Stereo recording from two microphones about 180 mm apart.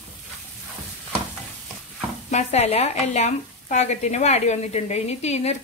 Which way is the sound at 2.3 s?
40° left (ahead or behind).